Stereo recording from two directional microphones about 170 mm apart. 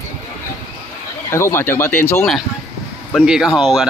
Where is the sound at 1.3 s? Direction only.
15° left (ahead or behind).